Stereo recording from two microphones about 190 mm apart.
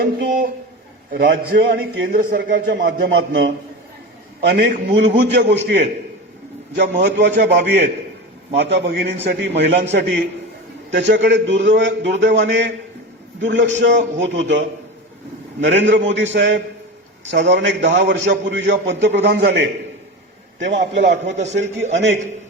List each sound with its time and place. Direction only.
1.2 s a man's voice: 65° right (ahead or behind)
15.6 s a man's voice: 65° right (ahead or behind)
21.2 s a man's voice: 40° right (ahead or behind)